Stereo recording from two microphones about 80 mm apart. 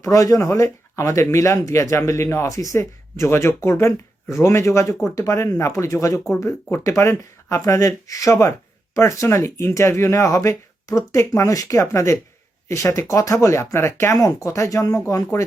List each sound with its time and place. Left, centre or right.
0.0 s speech: left